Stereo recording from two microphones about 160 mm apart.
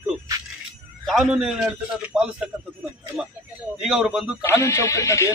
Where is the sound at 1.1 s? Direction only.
Centre (ahead or behind).